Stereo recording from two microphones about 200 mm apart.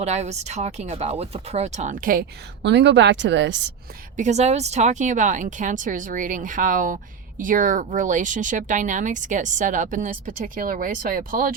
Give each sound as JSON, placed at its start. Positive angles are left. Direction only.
{"t": 0.0, "sound": "speech", "side_deg": -35}
{"t": 2.6, "sound": "speech", "side_deg": -60}
{"t": 4.2, "sound": "speech", "side_deg": -35}